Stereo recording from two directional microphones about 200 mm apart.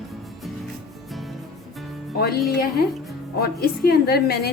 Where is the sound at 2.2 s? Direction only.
50° left (ahead or behind).